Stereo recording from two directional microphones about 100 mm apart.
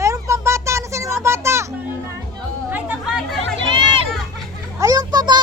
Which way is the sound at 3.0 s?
5° right (ahead or behind).